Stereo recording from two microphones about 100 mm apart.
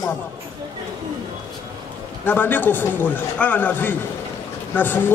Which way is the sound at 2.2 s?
20° left (ahead or behind).